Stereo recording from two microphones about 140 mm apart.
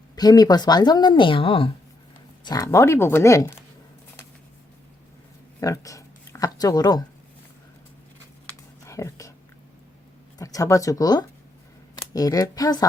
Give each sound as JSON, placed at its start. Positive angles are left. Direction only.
{"t": 0.2, "sound": "speech", "side_deg": 30}
{"t": 2.4, "sound": "speech", "side_deg": 25}
{"t": 5.5, "sound": "speech", "side_deg": 25}
{"t": 8.4, "sound": "a sound", "side_deg": 20}
{"t": 10.3, "sound": "speech", "side_deg": 25}